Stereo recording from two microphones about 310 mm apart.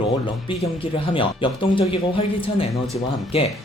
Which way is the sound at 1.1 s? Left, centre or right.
Centre.